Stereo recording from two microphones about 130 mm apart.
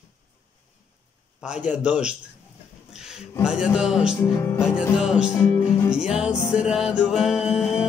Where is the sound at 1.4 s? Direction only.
10° right (ahead or behind).